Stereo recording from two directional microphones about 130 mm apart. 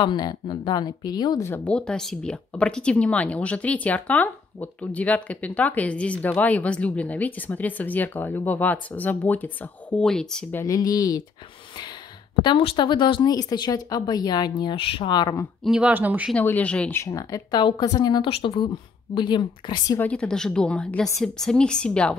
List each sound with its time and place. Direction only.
0.0 s speech: 35° left (ahead or behind)
1.4 s speech: 15° left (ahead or behind)
10.5 s speech: 25° left (ahead or behind)
12.4 s speech: 40° left (ahead or behind)
15.6 s speech: 5° right (ahead or behind)
15.9 s speech: 15° right (ahead or behind)
16.3 s speech: 10° left (ahead or behind)
17.0 s speech: 25° left (ahead or behind)
18.3 s a woman's voice: 45° left (ahead or behind)
20.0 s speech: 10° left (ahead or behind)